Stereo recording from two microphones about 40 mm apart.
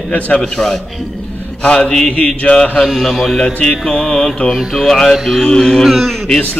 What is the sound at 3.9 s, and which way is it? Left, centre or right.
Mantra, left.